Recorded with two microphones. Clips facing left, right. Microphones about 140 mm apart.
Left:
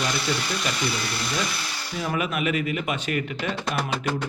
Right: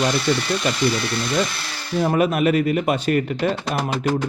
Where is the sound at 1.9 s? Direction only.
35° right (ahead or behind).